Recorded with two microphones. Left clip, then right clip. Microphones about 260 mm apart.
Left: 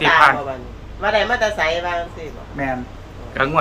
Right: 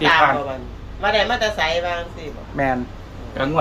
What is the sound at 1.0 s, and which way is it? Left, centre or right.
Speech, centre.